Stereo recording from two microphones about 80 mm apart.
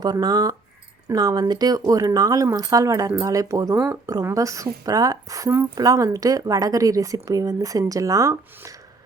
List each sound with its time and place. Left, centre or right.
0.0 s speech: right